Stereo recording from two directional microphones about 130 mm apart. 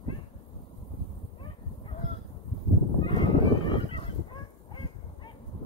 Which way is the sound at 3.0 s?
40° left (ahead or behind).